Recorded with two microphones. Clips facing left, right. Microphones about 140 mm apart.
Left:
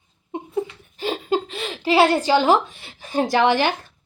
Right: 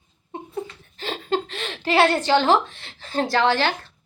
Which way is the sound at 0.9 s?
10° left (ahead or behind).